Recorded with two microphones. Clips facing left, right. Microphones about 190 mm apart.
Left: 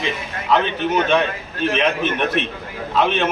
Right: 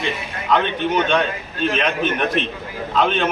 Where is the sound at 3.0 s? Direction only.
5° left (ahead or behind).